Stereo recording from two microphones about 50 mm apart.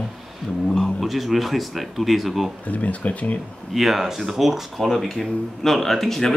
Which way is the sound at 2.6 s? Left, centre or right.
Left.